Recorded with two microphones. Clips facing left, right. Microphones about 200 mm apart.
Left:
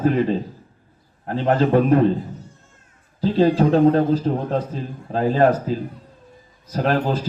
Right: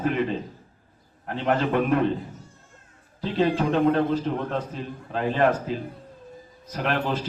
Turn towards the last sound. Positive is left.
turn(degrees=35)  # may be behind; listen again after turning